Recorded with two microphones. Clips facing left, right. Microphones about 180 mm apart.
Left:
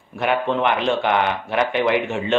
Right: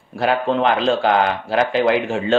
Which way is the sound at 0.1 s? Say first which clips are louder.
Right 2 dB; 35° right (ahead or behind).